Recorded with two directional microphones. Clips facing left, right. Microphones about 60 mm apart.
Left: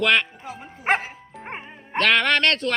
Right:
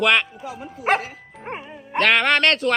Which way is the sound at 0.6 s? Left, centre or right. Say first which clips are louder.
Right 5 dB; left.